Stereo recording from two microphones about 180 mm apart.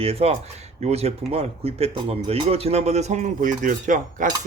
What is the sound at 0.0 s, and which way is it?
Speech, 35° right (ahead or behind).